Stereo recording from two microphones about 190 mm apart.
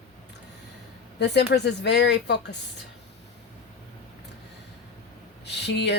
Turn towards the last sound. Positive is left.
turn(degrees=65)  # may be behind; listen again after turning